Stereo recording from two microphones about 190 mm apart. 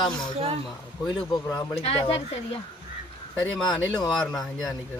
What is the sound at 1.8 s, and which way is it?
Speech, 30° left (ahead or behind).